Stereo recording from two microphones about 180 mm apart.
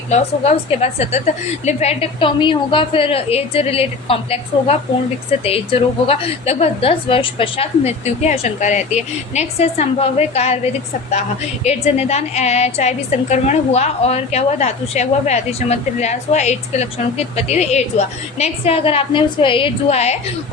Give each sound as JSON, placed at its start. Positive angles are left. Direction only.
{"t": 0.1, "sound": "a woman's voice", "side_deg": 35}
{"t": 6.1, "sound": "a woman's voice", "side_deg": 30}
{"t": 11.6, "sound": "a woman's voice", "side_deg": 35}